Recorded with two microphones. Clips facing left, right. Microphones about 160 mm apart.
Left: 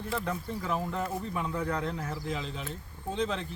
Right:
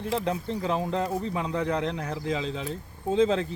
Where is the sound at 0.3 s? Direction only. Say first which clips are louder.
Right 5 dB; 75° right (ahead or behind).